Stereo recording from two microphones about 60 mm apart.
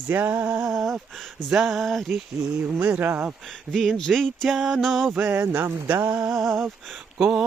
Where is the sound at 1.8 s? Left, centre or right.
Centre.